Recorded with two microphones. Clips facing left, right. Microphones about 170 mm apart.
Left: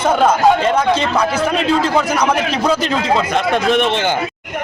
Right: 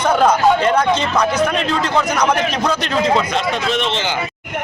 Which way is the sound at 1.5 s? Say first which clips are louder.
Left 3 dB; 5° left (ahead or behind).